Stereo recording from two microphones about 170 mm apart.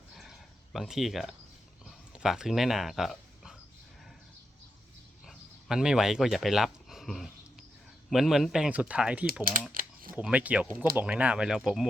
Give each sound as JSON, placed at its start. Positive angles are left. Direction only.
{"t": 0.2, "sound": "a sound", "side_deg": 0}
{"t": 5.2, "sound": "speech", "side_deg": 0}
{"t": 9.7, "sound": "typing", "side_deg": -55}
{"t": 10.2, "sound": "speech", "side_deg": -5}